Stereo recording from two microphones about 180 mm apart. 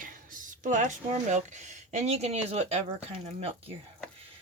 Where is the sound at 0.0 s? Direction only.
45° right (ahead or behind).